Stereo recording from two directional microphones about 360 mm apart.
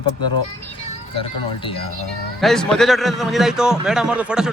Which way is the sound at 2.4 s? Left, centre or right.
Centre.